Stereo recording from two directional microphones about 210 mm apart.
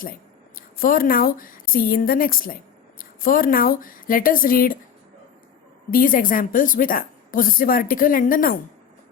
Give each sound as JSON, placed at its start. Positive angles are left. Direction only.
{"t": 0.5, "sound": "a woman's voice", "side_deg": 40}
{"t": 5.9, "sound": "a woman's voice", "side_deg": 40}